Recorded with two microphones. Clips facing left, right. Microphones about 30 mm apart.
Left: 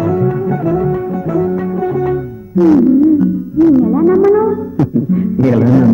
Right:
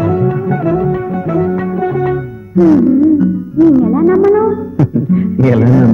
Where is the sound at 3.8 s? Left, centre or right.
Centre.